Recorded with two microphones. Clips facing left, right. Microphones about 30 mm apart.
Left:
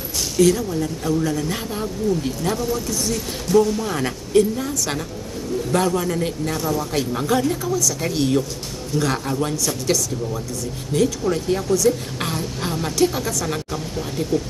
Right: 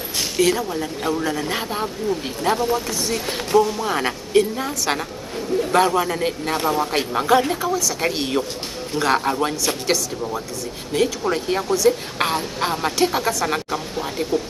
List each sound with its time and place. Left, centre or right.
0.4 s a woman's voice: right
3.5 s a woman's voice: centre